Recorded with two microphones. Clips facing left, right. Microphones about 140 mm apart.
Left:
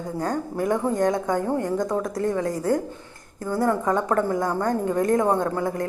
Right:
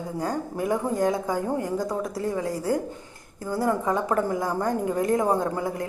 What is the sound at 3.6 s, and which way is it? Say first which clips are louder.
A woman's voice: left 2 dB; 10° right (ahead or behind).